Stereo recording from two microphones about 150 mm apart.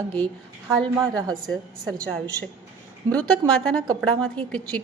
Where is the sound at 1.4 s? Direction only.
Centre (ahead or behind).